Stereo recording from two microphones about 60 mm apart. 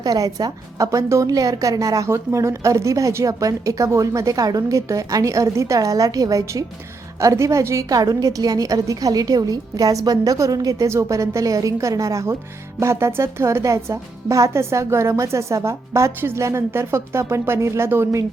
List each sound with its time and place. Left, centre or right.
0.0 s a woman's voice: right
2.0 s a woman's voice: right
3.2 s a woman's voice: right
4.9 s a woman's voice: right
7.2 s a woman's voice: right
7.9 s a woman's voice: right
10.8 s a woman's voice: right
12.8 s a woman's voice: right